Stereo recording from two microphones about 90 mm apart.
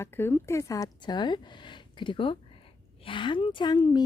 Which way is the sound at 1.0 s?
55° left (ahead or behind).